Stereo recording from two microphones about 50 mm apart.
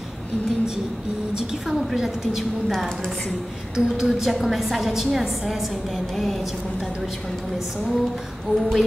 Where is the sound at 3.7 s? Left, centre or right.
Centre.